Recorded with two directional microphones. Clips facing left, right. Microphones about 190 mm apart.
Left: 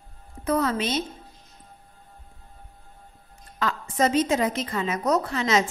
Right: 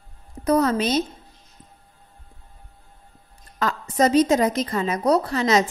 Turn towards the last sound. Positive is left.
turn(degrees=-40)  # may be behind; listen again after turning